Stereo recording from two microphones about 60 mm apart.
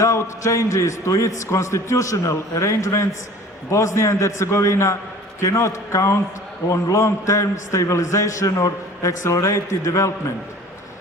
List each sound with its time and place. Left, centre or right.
0.0 s a man's voice: left
6.7 s a man's voice: left
6.9 s a man's voice: left